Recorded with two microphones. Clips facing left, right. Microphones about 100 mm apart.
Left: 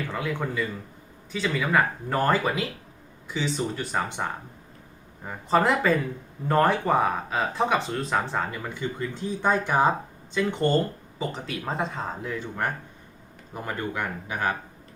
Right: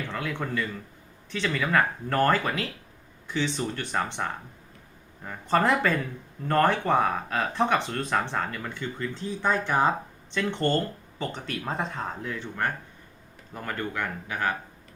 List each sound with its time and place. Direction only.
0.1 s a man's voice: 5° left (ahead or behind)
5.5 s speech: 5° left (ahead or behind)